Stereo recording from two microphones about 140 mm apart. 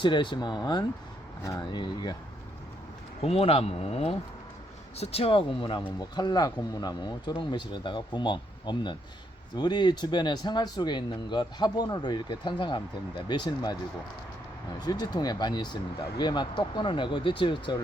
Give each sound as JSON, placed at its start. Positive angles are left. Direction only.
{"t": 0.0, "sound": "speech", "side_deg": 35}
{"t": 3.2, "sound": "speech", "side_deg": 45}
{"t": 14.8, "sound": "speech", "side_deg": 30}